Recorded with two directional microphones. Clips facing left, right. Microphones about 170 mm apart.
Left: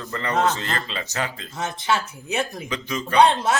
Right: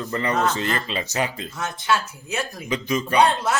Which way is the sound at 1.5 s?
25° left (ahead or behind).